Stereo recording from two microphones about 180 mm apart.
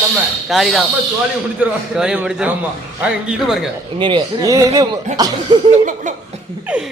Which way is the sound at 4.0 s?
25° right (ahead or behind).